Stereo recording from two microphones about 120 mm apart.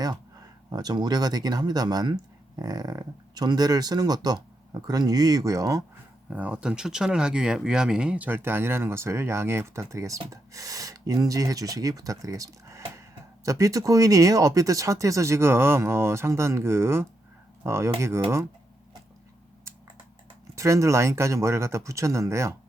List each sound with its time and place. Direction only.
0.7 s speech: 35° right (ahead or behind)
6.3 s speech: 10° right (ahead or behind)
20.6 s speech: 25° right (ahead or behind)